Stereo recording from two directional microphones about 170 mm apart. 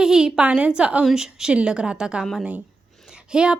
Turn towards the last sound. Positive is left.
turn(degrees=-5)  # may be behind; listen again after turning